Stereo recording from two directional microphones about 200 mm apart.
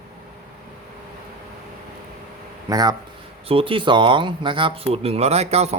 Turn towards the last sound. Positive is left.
turn(degrees=-30)  # may be behind; listen again after turning